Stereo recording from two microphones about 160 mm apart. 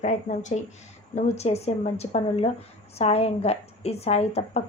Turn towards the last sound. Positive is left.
turn(degrees=40)  # may be behind; listen again after turning